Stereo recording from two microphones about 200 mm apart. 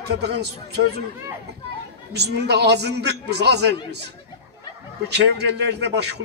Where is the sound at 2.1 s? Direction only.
55° right (ahead or behind).